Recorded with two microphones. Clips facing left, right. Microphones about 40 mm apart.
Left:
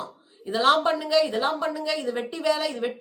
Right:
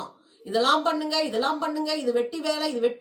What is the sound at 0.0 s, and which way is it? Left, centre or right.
A woman's voice, centre.